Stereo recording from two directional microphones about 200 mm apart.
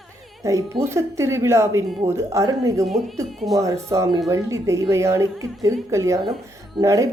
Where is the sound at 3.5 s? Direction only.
15° right (ahead or behind).